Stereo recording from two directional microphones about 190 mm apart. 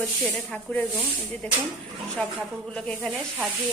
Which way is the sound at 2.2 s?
5° left (ahead or behind).